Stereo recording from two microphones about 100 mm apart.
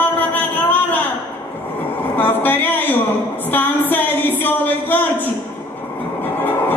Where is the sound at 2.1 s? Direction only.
20° left (ahead or behind).